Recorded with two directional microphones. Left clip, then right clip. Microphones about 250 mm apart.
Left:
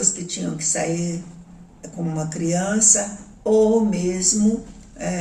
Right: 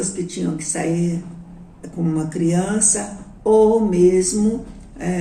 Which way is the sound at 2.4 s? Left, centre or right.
Centre.